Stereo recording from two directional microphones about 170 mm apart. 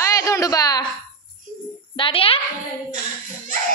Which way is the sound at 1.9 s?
30° left (ahead or behind).